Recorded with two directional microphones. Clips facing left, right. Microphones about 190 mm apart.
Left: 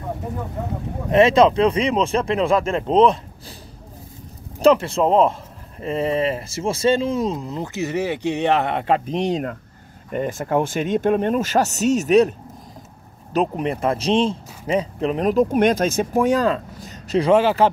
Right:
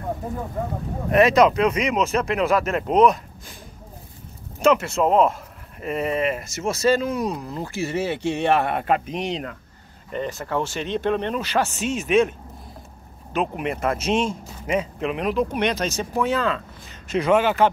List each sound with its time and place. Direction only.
1.1 s speech: 25° left (ahead or behind)
4.6 s speech: 35° left (ahead or behind)
9.3 s speech: 45° left (ahead or behind)